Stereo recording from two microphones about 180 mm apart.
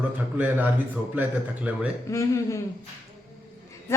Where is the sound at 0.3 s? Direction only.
10° right (ahead or behind).